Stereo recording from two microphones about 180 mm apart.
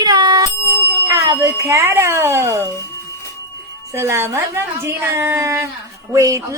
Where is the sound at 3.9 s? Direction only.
15° right (ahead or behind).